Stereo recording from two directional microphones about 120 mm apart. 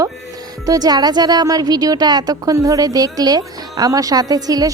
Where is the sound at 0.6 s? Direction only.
30° right (ahead or behind).